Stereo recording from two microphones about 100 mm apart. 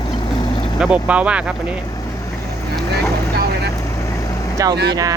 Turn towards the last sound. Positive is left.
turn(degrees=-35)  # may be behind; listen again after turning